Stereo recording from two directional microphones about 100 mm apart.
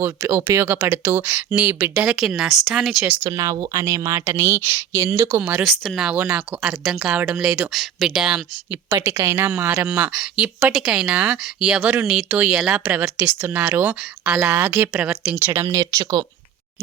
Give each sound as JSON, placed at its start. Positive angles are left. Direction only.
{"t": 0.0, "sound": "speech", "side_deg": -25}
{"t": 1.3, "sound": "speech", "side_deg": -15}
{"t": 3.2, "sound": "speech", "side_deg": -35}
{"t": 5.4, "sound": "speech", "side_deg": -15}
{"t": 5.6, "sound": "speech", "side_deg": 0}
{"t": 6.1, "sound": "speech", "side_deg": -10}
{"t": 8.9, "sound": "speech", "side_deg": -30}
{"t": 10.1, "sound": "speech", "side_deg": -10}
{"t": 15.4, "sound": "speech", "side_deg": -25}